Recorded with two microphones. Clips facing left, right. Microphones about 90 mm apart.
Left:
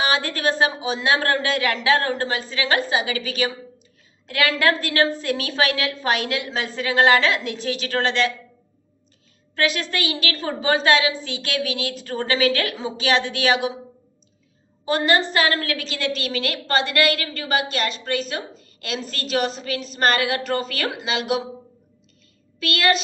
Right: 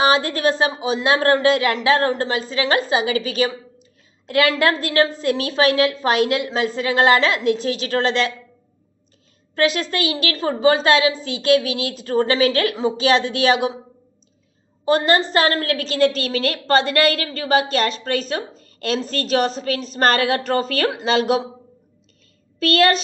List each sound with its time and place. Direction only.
0.0 s a woman's voice: 30° right (ahead or behind)
9.6 s a woman's voice: 25° right (ahead or behind)
14.8 s a woman's voice: 30° right (ahead or behind)
22.6 s a woman's voice: 40° right (ahead or behind)